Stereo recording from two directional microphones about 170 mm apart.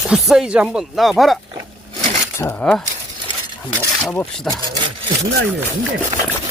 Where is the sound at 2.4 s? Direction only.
10° left (ahead or behind).